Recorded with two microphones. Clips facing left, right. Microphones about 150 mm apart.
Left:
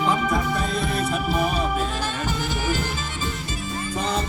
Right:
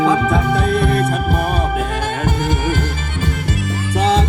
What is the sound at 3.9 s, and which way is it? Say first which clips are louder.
Music: right 10 dB; 90° right.